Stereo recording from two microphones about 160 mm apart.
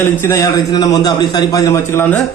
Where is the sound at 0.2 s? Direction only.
20° left (ahead or behind).